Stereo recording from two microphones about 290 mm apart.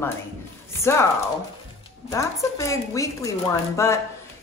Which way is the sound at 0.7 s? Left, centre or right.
Centre.